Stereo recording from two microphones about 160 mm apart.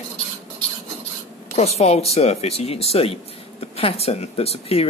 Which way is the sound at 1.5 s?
40° left (ahead or behind).